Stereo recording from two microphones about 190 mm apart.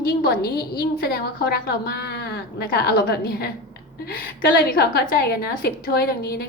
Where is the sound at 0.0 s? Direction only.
55° left (ahead or behind).